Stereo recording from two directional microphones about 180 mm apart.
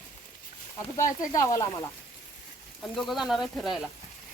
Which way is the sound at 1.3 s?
20° left (ahead or behind).